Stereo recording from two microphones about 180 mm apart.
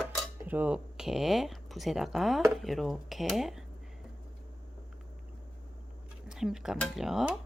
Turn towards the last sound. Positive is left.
turn(degrees=0)  # may be behind; listen again after turning